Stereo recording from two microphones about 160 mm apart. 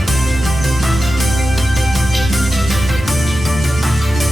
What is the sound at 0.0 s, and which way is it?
Music, centre (ahead or behind).